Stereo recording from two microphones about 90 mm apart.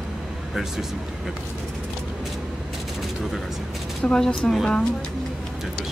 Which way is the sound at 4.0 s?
10° left (ahead or behind).